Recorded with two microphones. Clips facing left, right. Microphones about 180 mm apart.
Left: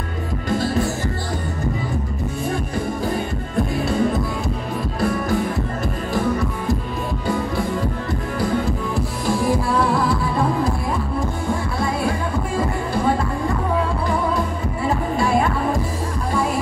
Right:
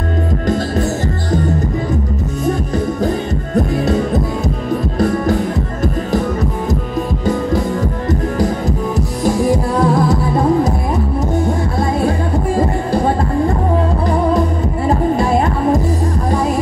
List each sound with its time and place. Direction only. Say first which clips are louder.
7.8 s music: right 6 dB; 45° right (ahead or behind)
12.5 s music: right 5 dB; 40° right (ahead or behind)
14.9 s music: right 5 dB; 40° right (ahead or behind)